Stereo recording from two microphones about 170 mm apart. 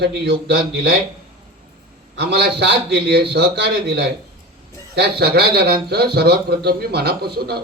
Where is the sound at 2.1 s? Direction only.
70° right (ahead or behind).